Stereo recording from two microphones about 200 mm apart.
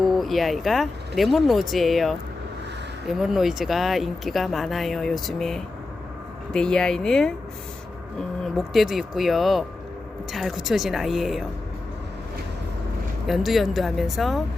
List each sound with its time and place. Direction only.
0.0 s speech: centre (ahead or behind)
8.5 s speech: centre (ahead or behind)
13.2 s speech: centre (ahead or behind)